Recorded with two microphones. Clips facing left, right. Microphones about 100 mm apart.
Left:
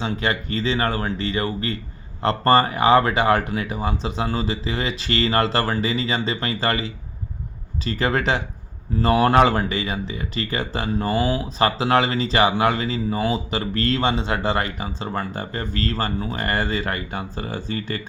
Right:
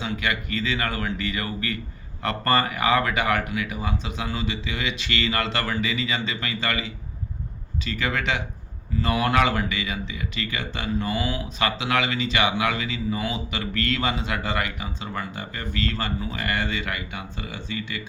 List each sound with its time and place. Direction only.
0.0 s speech: 35° left (ahead or behind)